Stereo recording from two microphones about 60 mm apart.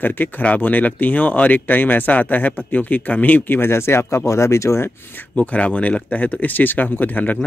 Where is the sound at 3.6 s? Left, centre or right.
Left.